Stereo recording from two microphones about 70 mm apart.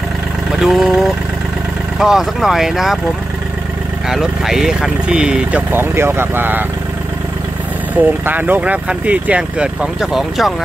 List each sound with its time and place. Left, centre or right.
0.6 s speech: centre
4.1 s speech: centre
5.7 s speech: right
8.3 s speech: right
9.9 s speech: centre